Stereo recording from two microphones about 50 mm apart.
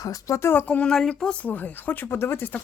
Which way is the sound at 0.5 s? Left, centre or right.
Left.